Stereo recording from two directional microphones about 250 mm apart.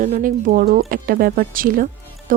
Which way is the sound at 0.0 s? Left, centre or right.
Right.